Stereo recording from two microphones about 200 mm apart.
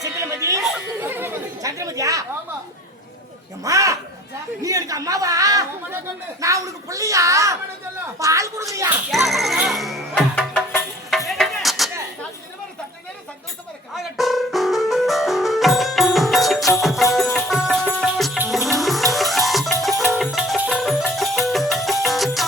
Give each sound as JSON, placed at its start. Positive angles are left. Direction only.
{"t": 0.0, "sound": "a sound", "side_deg": -15}
{"t": 0.6, "sound": "chatter", "side_deg": -5}
{"t": 3.6, "sound": "speech", "side_deg": -15}
{"t": 9.0, "sound": "music", "side_deg": 0}
{"t": 13.9, "sound": "music", "side_deg": 0}